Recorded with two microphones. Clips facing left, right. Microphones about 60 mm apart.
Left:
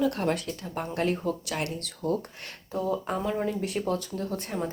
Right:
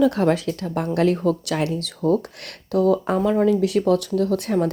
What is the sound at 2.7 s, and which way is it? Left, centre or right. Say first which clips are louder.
Speech: right 10 dB; right.